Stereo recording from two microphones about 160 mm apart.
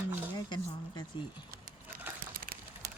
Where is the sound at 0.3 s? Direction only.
25° left (ahead or behind).